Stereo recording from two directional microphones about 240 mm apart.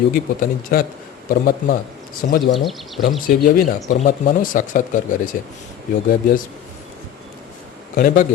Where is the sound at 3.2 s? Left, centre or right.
Left.